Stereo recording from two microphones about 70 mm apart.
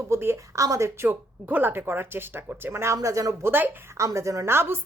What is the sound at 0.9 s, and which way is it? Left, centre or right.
Speech, right.